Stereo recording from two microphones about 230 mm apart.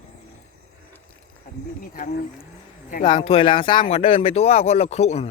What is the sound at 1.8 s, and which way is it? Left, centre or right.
Speech, left.